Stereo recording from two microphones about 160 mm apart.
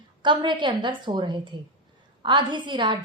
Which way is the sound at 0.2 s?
30° right (ahead or behind).